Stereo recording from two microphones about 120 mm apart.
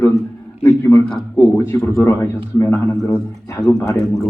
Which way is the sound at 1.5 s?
20° left (ahead or behind).